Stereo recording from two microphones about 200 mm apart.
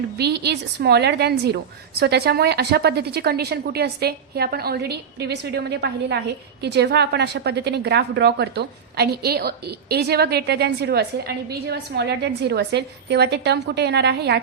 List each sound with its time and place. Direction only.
0.2 s a woman's voice: 55° right (ahead or behind)